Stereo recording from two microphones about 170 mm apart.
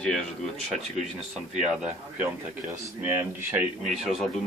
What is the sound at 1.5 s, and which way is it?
Speech, 5° right (ahead or behind).